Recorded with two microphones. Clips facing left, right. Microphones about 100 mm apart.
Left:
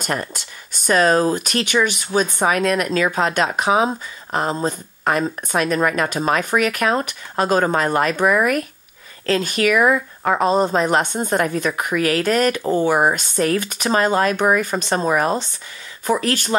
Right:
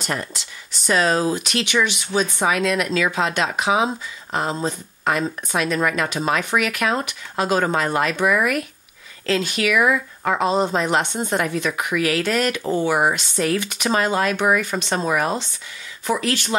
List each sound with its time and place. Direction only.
0.0 s speech: 50° left (ahead or behind)